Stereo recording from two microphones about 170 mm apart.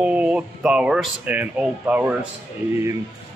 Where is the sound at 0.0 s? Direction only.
5° right (ahead or behind).